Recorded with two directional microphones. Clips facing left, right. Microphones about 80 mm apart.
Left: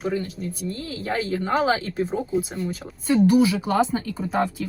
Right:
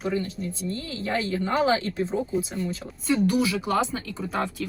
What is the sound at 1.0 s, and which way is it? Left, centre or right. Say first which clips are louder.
Speech: left 1 dB; left.